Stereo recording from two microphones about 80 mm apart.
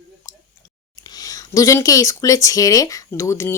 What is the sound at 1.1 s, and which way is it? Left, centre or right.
A woman's voice, left.